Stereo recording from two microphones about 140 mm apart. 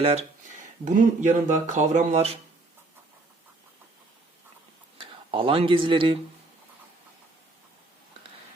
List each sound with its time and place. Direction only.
0.0 s speech: 45° right (ahead or behind)
0.9 s speech: 60° right (ahead or behind)
4.9 s speech: 40° right (ahead or behind)